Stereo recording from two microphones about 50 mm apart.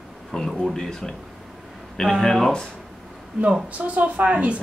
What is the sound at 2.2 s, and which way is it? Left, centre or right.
Speech, centre.